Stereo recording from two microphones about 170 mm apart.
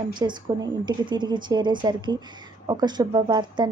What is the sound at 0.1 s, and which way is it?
A woman's voice, 25° right (ahead or behind).